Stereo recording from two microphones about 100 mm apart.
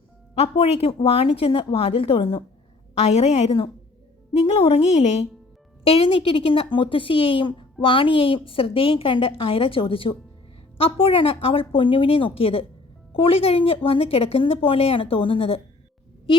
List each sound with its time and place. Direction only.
0.3 s a woman's voice: 90° left; by 2.4 s 60° left (ahead or behind)
3.0 s a woman's voice: 90° left
5.8 s a woman's voice: 75° left (ahead or behind)